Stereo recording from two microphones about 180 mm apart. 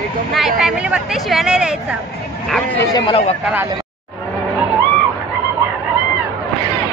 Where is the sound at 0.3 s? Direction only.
Centre (ahead or behind).